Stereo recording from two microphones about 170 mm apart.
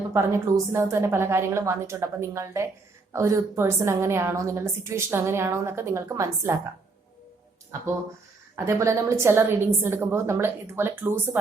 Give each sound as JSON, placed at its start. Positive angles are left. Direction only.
{"t": 0.1, "sound": "a woman's voice", "side_deg": -15}
{"t": 8.5, "sound": "a woman's voice", "side_deg": -15}